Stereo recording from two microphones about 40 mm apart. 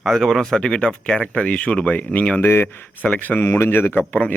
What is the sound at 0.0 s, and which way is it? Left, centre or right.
Speech, centre.